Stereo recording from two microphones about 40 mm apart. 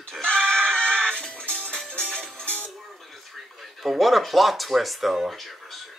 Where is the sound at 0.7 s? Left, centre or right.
Left.